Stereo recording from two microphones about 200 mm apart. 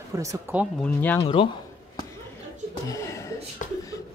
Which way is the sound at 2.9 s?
15° left (ahead or behind).